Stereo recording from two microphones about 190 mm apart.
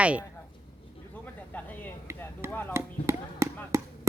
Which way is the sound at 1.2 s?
10° left (ahead or behind).